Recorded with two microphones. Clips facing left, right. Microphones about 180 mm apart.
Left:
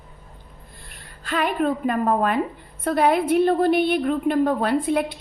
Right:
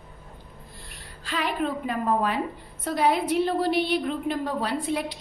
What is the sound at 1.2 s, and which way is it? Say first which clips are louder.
A woman's voice: left 5 dB; 50° left (ahead or behind).